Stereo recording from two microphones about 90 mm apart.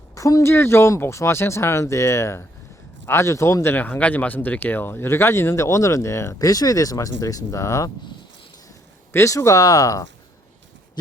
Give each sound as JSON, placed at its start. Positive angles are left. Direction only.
{"t": 0.1, "sound": "a sound", "side_deg": 40}
{"t": 0.5, "sound": "speech", "side_deg": 25}
{"t": 9.1, "sound": "speech", "side_deg": 35}